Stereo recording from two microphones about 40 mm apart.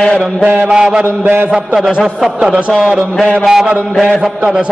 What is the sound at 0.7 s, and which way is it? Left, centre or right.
Mantra, centre.